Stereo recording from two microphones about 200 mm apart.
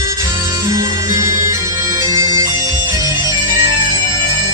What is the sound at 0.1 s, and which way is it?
Music, 15° right (ahead or behind).